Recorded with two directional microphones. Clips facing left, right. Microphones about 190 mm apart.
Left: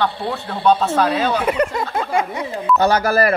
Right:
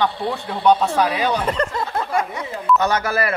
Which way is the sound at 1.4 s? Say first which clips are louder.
Left 3 dB; 10° left (ahead or behind).